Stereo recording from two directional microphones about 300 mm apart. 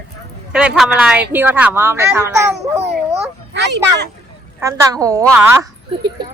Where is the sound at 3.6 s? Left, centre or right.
Right.